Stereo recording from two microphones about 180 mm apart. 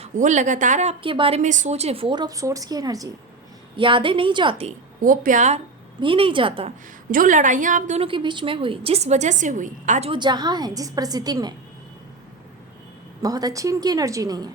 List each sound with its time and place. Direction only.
0.0 s a woman's voice: 40° right (ahead or behind)
5.0 s speech: 45° right (ahead or behind)
6.0 s a woman's voice: 30° right (ahead or behind)
7.1 s speech: 45° right (ahead or behind)
10.1 s a woman's voice: 25° right (ahead or behind)
13.2 s a woman's voice: 20° right (ahead or behind)